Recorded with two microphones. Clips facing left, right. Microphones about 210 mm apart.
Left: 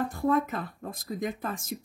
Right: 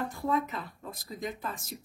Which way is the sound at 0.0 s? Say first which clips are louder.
Left 4 dB; 50° left (ahead or behind).